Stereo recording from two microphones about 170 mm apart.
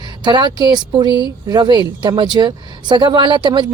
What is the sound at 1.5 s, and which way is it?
Speech, 25° right (ahead or behind).